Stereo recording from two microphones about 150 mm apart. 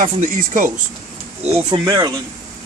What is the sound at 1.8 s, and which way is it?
Speech, 25° right (ahead or behind).